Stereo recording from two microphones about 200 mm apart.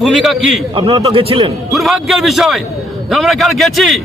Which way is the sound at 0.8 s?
25° right (ahead or behind).